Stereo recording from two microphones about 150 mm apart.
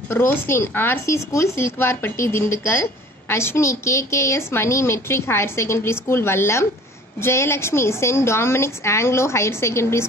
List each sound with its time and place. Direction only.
0.1 s speech: 15° left (ahead or behind)